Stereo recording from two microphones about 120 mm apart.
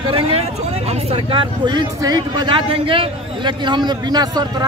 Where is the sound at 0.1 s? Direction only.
50° right (ahead or behind).